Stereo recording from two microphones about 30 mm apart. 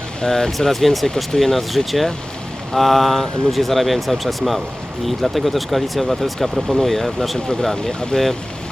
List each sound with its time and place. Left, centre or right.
0.2 s speech: left
0.7 s speech: centre
1.0 s speech: centre
1.4 s speech: centre